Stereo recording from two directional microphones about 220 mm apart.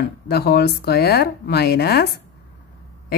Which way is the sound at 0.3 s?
45° left (ahead or behind).